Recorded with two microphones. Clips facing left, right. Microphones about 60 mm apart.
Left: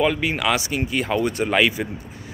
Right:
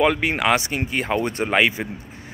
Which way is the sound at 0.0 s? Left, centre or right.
Right.